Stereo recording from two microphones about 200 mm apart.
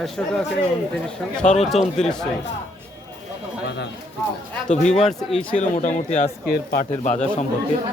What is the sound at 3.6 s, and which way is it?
Speech, 60° left (ahead or behind).